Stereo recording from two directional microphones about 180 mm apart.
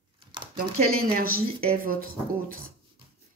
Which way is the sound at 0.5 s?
55° right (ahead or behind).